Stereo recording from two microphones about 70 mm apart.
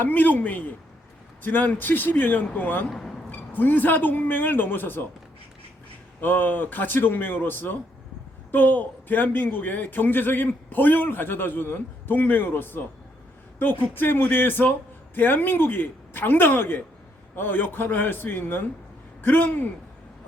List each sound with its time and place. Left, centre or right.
0.0 s a man's voice: left
6.1 s a man's voice: left